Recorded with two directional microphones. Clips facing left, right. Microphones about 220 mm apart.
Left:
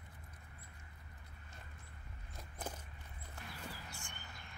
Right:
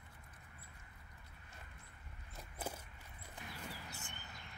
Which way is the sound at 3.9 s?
20° right (ahead or behind).